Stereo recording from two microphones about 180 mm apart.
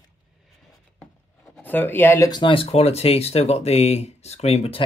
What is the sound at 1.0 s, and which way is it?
Speech, 5° left (ahead or behind).